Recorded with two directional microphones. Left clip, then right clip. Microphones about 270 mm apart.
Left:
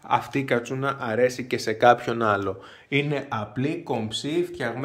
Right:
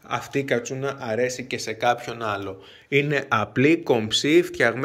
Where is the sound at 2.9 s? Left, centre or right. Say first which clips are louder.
Right 5 dB; centre.